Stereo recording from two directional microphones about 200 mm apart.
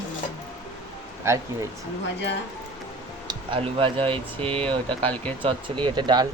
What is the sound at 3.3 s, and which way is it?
Speech, 25° right (ahead or behind).